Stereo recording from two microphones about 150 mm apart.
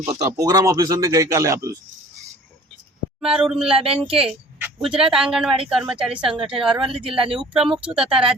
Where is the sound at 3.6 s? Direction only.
40° right (ahead or behind).